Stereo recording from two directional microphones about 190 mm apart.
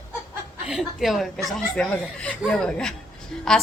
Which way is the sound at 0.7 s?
Centre (ahead or behind).